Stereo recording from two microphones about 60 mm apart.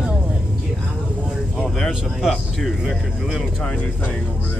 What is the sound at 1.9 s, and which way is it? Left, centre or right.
Speech, centre.